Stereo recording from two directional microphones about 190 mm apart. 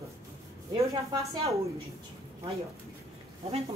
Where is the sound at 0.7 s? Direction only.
15° right (ahead or behind).